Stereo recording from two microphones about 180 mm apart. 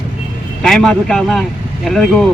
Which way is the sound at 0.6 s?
5° left (ahead or behind).